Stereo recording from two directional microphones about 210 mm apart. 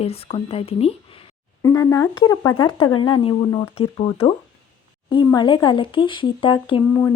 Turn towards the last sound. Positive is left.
turn(degrees=20)  # may be behind; listen again after turning